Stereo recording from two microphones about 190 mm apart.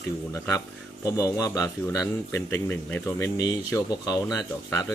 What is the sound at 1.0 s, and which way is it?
Speech, 15° left (ahead or behind).